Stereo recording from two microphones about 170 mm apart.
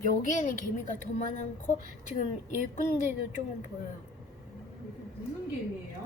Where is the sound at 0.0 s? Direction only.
50° left (ahead or behind).